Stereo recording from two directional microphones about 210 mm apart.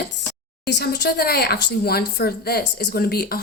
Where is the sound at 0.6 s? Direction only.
50° left (ahead or behind).